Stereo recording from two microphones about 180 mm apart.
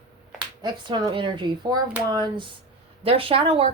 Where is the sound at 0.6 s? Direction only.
25° right (ahead or behind).